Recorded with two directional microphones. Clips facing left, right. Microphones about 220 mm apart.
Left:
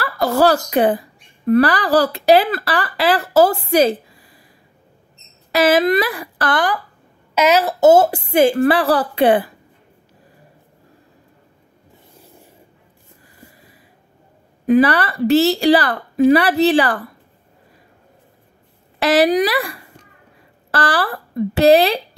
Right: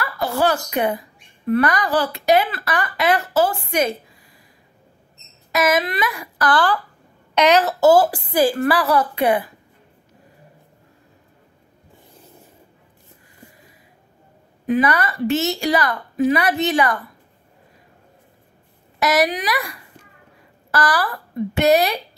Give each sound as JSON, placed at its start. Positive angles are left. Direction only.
{"t": 0.0, "sound": "speech", "side_deg": 40}
{"t": 5.5, "sound": "speech", "side_deg": 30}
{"t": 7.3, "sound": "a woman's voice", "side_deg": 5}
{"t": 7.8, "sound": "a woman's voice", "side_deg": 25}
{"t": 14.7, "sound": "speech", "side_deg": 30}
{"t": 18.9, "sound": "a woman's voice", "side_deg": 30}